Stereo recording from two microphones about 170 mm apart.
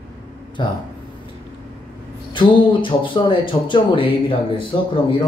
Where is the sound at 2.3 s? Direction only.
30° left (ahead or behind).